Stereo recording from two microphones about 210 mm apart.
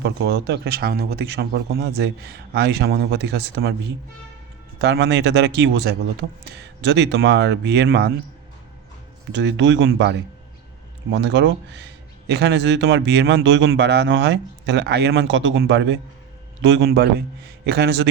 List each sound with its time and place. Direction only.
0.0 s speech: 50° right (ahead or behind)
4.8 s speech: 55° right (ahead or behind)
9.3 s speech: 60° right (ahead or behind)